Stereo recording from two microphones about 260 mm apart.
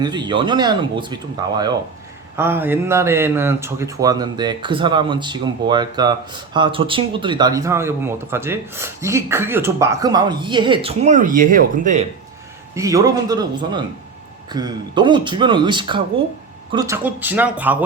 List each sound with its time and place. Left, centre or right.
0.0 s speech: centre
12.7 s speech: centre